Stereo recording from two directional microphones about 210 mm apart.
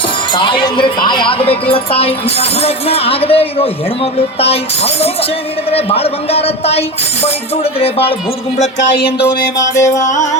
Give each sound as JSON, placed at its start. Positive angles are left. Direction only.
{"t": 0.3, "sound": "a woman's voice", "side_deg": 20}
{"t": 9.7, "sound": "music", "side_deg": 15}
{"t": 10.0, "sound": "speech", "side_deg": 35}